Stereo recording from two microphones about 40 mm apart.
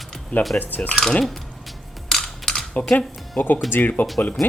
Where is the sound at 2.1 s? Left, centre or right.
Centre.